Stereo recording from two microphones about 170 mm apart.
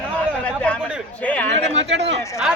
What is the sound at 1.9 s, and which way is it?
Speech, 90° right.